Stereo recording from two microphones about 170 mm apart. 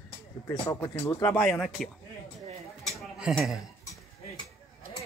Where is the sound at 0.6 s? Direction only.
20° left (ahead or behind).